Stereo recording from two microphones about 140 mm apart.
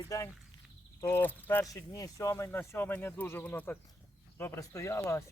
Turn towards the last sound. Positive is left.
turn(degrees=20)  # may be behind; listen again after turning